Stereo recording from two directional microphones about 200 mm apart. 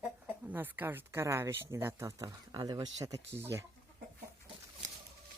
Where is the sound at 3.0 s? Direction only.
15° right (ahead or behind).